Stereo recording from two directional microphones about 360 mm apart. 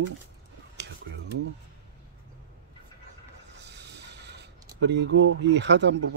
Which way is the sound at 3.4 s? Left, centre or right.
Right.